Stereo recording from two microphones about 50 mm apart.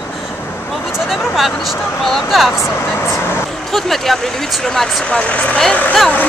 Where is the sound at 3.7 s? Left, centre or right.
Centre.